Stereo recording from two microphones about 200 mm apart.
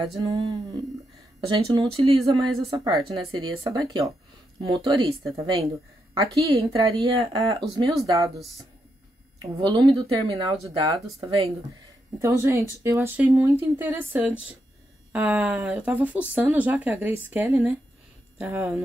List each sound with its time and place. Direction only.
0.0 s speech: 20° right (ahead or behind)
9.4 s speech: 20° right (ahead or behind)
12.2 s speech: 15° right (ahead or behind)